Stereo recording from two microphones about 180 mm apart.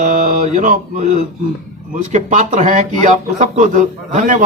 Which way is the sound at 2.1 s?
45° right (ahead or behind).